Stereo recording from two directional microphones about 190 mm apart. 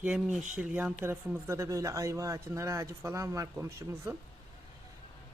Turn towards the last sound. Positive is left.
turn(degrees=-15)  # may be behind; listen again after turning